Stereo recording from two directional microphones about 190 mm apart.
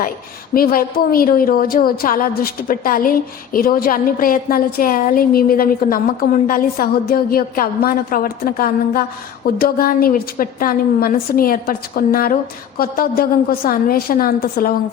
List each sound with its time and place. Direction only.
0.5 s a woman's voice: 50° left (ahead or behind)